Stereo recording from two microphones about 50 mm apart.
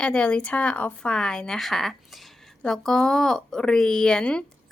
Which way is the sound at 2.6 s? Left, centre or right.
Centre.